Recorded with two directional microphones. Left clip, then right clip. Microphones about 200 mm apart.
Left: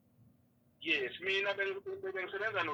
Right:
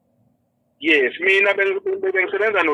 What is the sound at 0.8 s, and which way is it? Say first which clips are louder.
Speech: right 18 dB; 30° right (ahead or behind).